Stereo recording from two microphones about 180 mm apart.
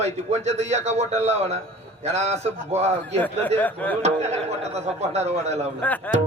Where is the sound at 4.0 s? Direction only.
35° right (ahead or behind).